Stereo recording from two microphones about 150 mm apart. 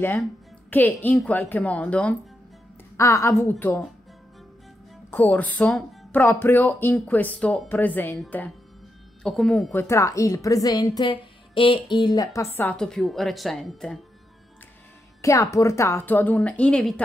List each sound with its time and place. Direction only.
0.7 s speech: 15° left (ahead or behind)
3.0 s a woman's voice: 20° left (ahead or behind)
5.1 s a woman's voice: 10° left (ahead or behind)
9.7 s a woman's voice: 15° left (ahead or behind)
12.6 s a woman's voice: 5° left (ahead or behind)
15.2 s speech: 20° left (ahead or behind)